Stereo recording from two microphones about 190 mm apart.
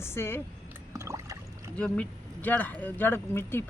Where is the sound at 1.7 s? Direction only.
5° left (ahead or behind).